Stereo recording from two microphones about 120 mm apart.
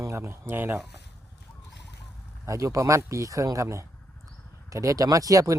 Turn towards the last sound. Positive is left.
turn(degrees=-30)  # may be behind; listen again after turning